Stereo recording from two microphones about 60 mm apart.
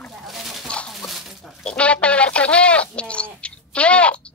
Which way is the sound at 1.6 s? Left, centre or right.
Centre.